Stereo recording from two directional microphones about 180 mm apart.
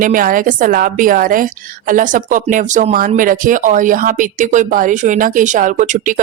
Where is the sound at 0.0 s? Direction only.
50° right (ahead or behind).